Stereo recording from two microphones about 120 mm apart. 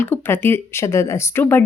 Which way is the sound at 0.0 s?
15° left (ahead or behind).